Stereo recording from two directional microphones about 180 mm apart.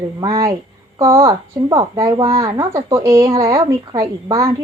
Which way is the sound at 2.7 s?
15° right (ahead or behind).